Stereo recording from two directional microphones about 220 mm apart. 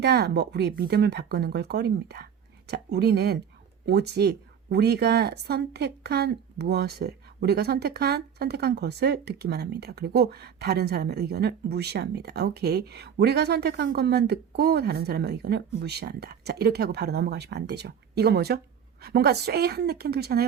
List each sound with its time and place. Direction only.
0.0 s speech: 50° right (ahead or behind)